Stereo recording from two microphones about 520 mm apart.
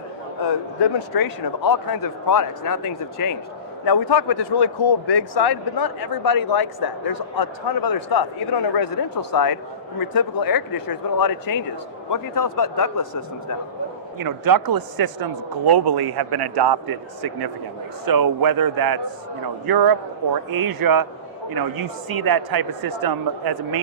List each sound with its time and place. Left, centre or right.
0.5 s a man's voice: left
14.2 s a man's voice: right